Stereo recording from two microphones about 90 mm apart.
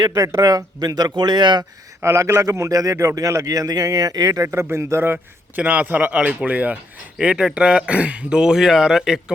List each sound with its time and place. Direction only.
0.3 s speech: 45° right (ahead or behind)
2.0 s a man's voice: 30° right (ahead or behind)
4.4 s a man's voice: 30° right (ahead or behind); by 9.2 s 5° right (ahead or behind)